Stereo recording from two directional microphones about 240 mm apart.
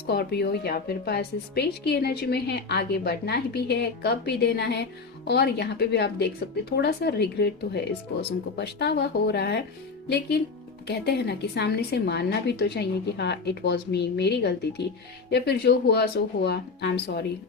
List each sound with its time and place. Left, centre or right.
0.0 s a woman's voice: left